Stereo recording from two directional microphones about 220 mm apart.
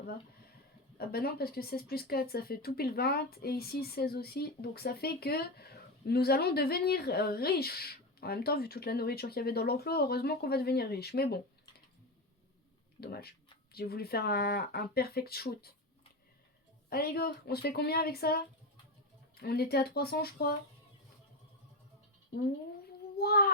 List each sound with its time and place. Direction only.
0.9 s speech: 45° left (ahead or behind)
13.0 s speech: 45° left (ahead or behind)
16.9 s speech: 45° left (ahead or behind)
23.1 s a child's voice: 45° left (ahead or behind)